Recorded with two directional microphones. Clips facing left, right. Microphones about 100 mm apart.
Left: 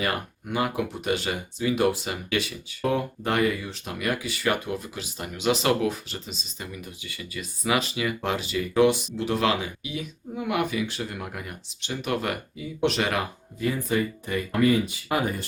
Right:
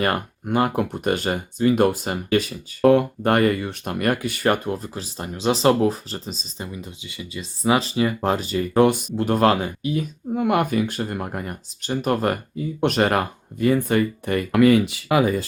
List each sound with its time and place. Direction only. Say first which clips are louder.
0.0 s speech: right 6 dB; 50° right (ahead or behind)
2.8 s speech: right 10 dB; 60° right (ahead or behind); by 6.7 s 35° right (ahead or behind)
6.7 s speech: right 3 dB; 25° right (ahead or behind); by 15.3 s 80° right